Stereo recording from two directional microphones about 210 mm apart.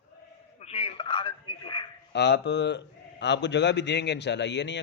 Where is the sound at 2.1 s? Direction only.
55° left (ahead or behind).